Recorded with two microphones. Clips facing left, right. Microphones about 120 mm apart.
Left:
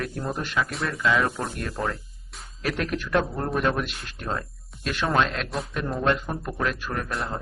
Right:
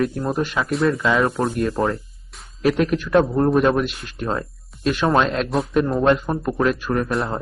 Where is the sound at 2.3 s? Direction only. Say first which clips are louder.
Even; centre (ahead or behind).